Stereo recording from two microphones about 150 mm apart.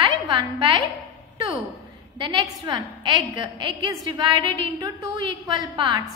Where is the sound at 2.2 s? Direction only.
30° right (ahead or behind).